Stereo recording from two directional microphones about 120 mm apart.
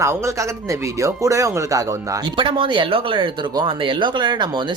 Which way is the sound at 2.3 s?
45° right (ahead or behind).